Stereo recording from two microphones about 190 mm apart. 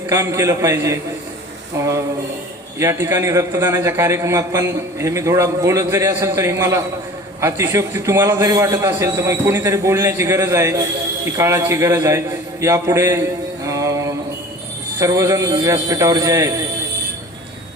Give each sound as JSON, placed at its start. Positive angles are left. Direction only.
{"t": 0.1, "sound": "a man's voice", "side_deg": -15}